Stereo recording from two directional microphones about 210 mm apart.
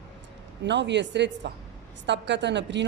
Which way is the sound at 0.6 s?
55° right (ahead or behind).